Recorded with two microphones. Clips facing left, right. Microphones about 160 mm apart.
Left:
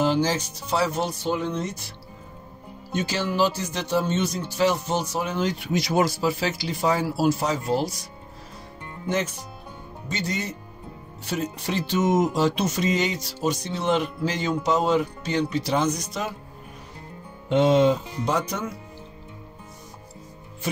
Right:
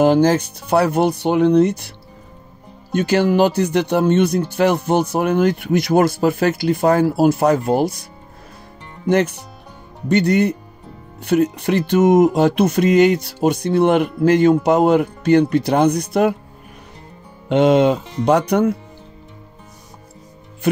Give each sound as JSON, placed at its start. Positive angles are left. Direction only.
{"t": 0.0, "sound": "music", "side_deg": -55}
{"t": 2.9, "sound": "music", "side_deg": -60}
{"t": 9.1, "sound": "music", "side_deg": -65}
{"t": 17.5, "sound": "speech", "side_deg": -65}